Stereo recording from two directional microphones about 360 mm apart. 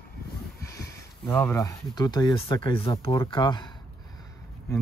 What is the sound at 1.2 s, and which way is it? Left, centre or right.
Speech, centre.